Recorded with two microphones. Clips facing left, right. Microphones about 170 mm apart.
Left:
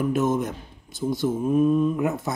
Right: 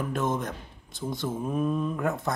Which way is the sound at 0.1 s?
5° left (ahead or behind).